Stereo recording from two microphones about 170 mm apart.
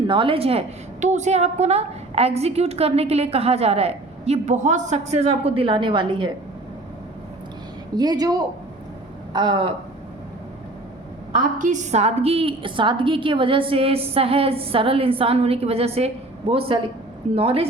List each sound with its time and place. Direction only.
0.1 s a woman's voice: 30° right (ahead or behind)
7.9 s speech: 25° right (ahead or behind)
11.3 s a woman's voice: 50° right (ahead or behind); by 17.7 s 35° right (ahead or behind)